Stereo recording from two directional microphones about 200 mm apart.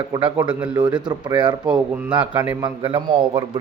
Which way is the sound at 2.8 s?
25° right (ahead or behind).